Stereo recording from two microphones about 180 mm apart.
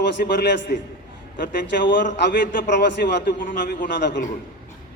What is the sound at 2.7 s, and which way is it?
A man's voice, 70° left (ahead or behind).